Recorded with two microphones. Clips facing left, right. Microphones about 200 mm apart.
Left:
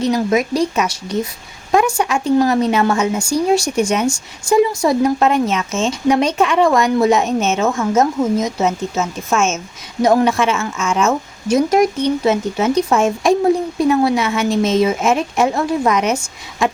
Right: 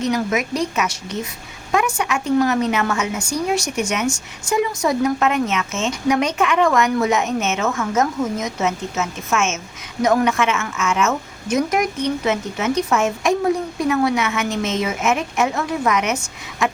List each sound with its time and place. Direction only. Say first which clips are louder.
0.0 s a woman's voice: left 4 dB; 30° left (ahead or behind)